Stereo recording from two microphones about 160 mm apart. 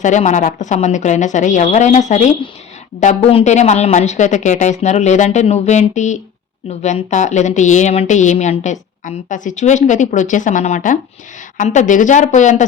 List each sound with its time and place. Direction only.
0.0 s a woman's voice: 50° left (ahead or behind)